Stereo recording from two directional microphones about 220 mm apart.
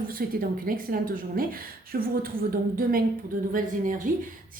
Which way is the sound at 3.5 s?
35° right (ahead or behind).